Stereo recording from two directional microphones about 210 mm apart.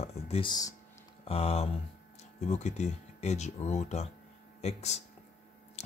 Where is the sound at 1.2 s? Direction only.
30° left (ahead or behind).